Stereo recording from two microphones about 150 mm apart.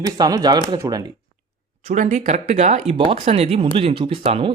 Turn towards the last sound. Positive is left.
turn(degrees=-40)  # may be behind; listen again after turning